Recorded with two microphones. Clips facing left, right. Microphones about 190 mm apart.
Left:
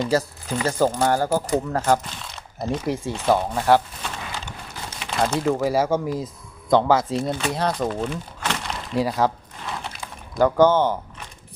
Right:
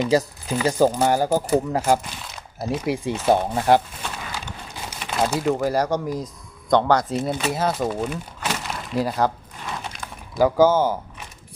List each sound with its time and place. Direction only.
0.0 s speech: 15° right (ahead or behind)
4.8 s crumpling: 10° right (ahead or behind)
5.5 s speech: centre (ahead or behind)
7.3 s speech: 10° right (ahead or behind)
10.3 s speech: 5° right (ahead or behind)